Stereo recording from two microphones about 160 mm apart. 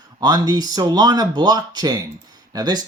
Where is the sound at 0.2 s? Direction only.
25° right (ahead or behind).